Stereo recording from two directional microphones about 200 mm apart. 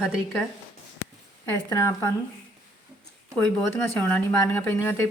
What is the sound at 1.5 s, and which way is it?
Speech, 15° left (ahead or behind).